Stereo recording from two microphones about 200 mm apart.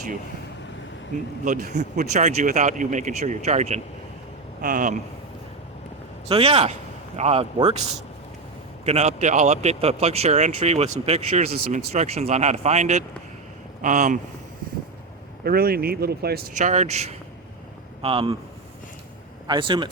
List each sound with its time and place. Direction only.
1.5 s speech: 40° right (ahead or behind)
6.2 s speech: 30° right (ahead or behind)
8.8 s speech: 30° right (ahead or behind)
11.5 s speech: 50° right (ahead or behind)
11.9 s speech: 30° right (ahead or behind)
15.4 s speech: 50° right (ahead or behind)
16.6 s speech: 35° right (ahead or behind)
19.5 s speech: 25° right (ahead or behind)